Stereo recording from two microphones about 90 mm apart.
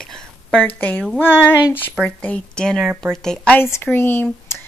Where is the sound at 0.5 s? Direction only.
15° left (ahead or behind).